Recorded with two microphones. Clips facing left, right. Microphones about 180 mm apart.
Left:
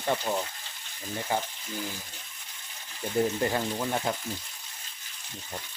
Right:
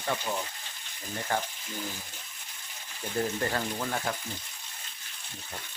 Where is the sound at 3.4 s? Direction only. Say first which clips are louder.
Left 3 dB; 15° left (ahead or behind).